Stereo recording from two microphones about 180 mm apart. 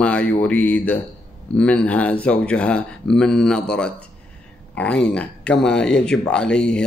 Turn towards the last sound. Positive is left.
turn(degrees=5)  # may be behind; listen again after turning